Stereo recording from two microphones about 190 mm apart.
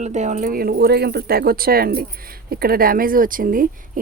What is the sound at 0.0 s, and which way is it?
A woman's voice, 40° right (ahead or behind).